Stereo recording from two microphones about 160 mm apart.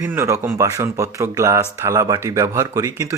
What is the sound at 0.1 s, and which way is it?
Speech, 15° right (ahead or behind).